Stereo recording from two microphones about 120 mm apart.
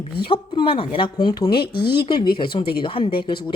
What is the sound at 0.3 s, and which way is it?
Speech, 45° left (ahead or behind).